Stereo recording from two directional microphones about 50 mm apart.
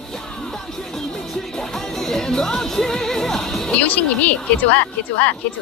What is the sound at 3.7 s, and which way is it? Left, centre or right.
A woman's voice, left.